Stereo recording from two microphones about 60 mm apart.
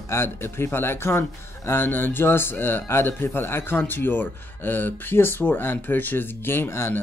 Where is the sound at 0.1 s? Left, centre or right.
Left.